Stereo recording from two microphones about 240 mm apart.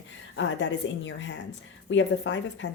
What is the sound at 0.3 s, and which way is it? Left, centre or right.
Speech, left.